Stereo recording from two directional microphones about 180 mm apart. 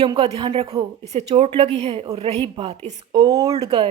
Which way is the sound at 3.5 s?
35° right (ahead or behind).